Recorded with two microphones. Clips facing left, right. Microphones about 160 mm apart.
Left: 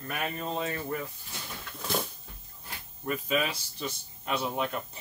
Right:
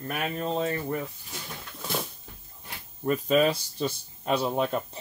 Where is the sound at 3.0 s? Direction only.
35° right (ahead or behind).